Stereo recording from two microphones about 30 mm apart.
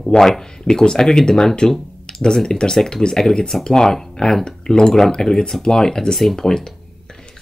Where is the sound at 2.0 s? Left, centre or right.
Left.